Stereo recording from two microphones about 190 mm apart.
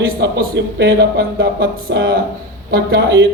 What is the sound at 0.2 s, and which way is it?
Speech, 60° right (ahead or behind).